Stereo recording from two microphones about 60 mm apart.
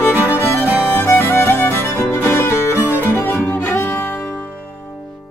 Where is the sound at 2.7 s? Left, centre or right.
Right.